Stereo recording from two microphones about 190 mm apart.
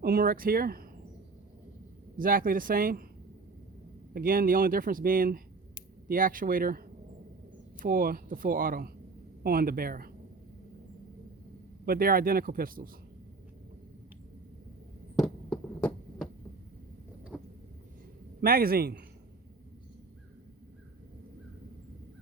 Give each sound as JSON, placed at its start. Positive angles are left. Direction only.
{"t": 0.0, "sound": "speech", "side_deg": -50}
{"t": 2.1, "sound": "speech", "side_deg": -45}
{"t": 4.1, "sound": "speech", "side_deg": -50}
{"t": 11.9, "sound": "speech", "side_deg": -50}
{"t": 15.2, "sound": "fireworks", "side_deg": 10}
{"t": 17.3, "sound": "vehicle", "side_deg": -5}
{"t": 18.3, "sound": "speech", "side_deg": -50}